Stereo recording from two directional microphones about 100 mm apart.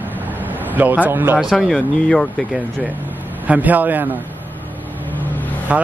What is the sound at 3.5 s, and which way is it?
Speech, 15° right (ahead or behind).